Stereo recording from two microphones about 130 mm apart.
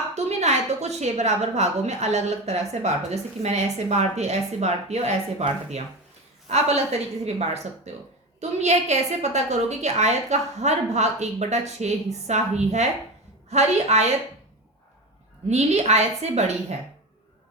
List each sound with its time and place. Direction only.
0.1 s a woman's voice: 60° right (ahead or behind)
15.4 s a woman's voice: 60° right (ahead or behind)